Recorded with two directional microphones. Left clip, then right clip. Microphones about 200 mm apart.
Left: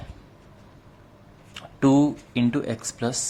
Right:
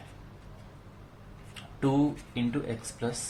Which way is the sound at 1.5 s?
40° left (ahead or behind).